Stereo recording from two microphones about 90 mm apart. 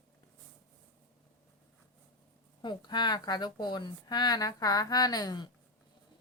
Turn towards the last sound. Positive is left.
turn(degrees=50)  # may be behind; listen again after turning